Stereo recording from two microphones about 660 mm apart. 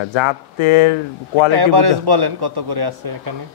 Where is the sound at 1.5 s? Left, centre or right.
Right.